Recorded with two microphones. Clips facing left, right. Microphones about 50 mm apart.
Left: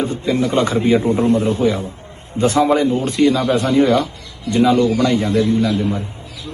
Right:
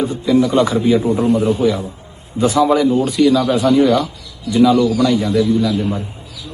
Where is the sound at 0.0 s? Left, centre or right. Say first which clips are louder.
Right 3 dB; left.